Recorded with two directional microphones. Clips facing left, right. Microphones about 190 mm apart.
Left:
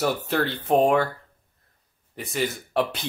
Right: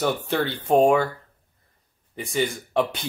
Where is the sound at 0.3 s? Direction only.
Centre (ahead or behind).